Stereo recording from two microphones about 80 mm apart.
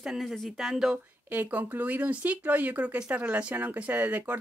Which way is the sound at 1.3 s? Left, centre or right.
Right.